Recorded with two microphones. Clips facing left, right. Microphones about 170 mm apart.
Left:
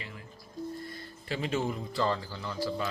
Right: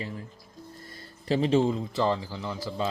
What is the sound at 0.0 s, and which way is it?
Speech, 35° right (ahead or behind).